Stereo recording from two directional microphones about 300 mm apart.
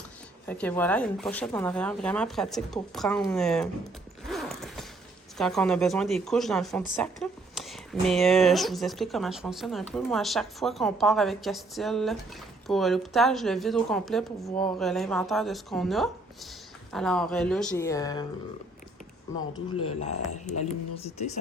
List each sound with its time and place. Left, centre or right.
0.4 s speech: centre
4.3 s mechanisms: centre
5.4 s speech: centre
19.8 s speech: left